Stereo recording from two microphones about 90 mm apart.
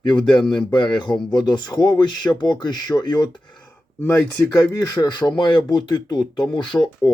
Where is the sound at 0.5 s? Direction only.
60° left (ahead or behind).